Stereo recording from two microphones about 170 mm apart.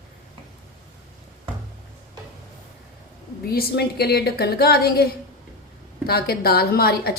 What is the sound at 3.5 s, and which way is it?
A woman's voice, 70° left (ahead or behind).